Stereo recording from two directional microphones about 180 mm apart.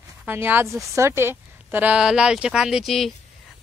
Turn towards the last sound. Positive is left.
turn(degrees=0)  # may be behind; listen again after turning